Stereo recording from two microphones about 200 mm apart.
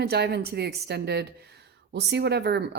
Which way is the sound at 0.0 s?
55° right (ahead or behind).